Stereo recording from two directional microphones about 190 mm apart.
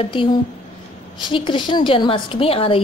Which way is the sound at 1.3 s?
25° left (ahead or behind).